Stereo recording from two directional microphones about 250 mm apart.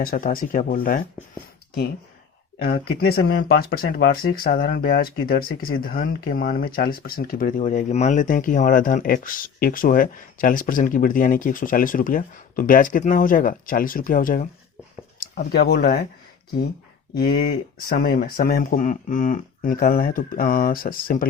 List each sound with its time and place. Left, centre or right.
0.0 s speech: left
2.6 s speech: left
17.2 s speech: left